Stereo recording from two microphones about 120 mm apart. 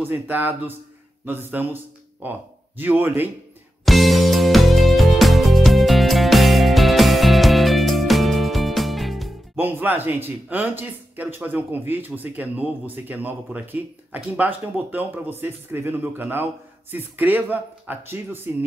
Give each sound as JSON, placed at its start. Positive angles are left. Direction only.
{"t": 0.0, "sound": "speech", "side_deg": -15}
{"t": 3.8, "sound": "music", "side_deg": 0}
{"t": 9.6, "sound": "speech", "side_deg": -15}